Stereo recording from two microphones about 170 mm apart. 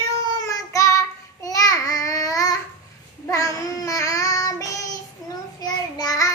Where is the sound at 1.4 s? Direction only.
20° left (ahead or behind).